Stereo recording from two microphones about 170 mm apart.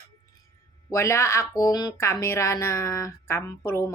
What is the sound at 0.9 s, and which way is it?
Speech, 15° left (ahead or behind).